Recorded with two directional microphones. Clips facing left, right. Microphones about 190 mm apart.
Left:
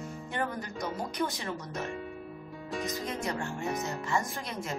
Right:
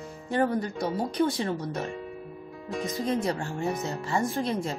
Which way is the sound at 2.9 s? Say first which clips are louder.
Right 6 dB; 30° right (ahead or behind).